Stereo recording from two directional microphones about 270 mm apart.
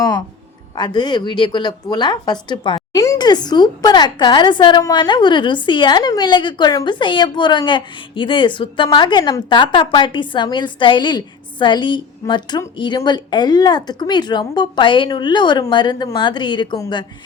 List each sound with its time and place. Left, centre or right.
0.8 s a woman's voice: centre